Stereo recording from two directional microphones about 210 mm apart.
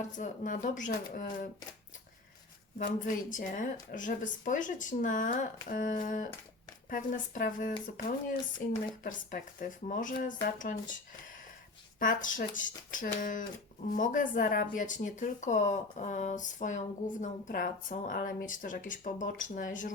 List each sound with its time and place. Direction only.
0.2 s speech: 40° left (ahead or behind)
2.7 s speech: 40° left (ahead or behind)